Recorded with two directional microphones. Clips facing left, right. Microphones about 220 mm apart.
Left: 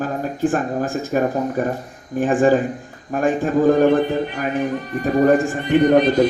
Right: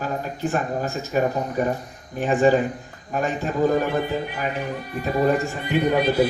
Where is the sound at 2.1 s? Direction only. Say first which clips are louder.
Left 3 dB; 50° left (ahead or behind).